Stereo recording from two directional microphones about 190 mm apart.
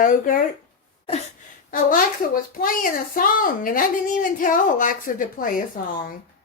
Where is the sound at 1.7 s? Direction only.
45° left (ahead or behind).